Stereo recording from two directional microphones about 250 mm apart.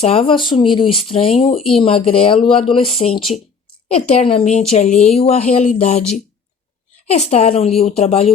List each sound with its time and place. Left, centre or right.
0.0 s speech: left
7.1 s speech: left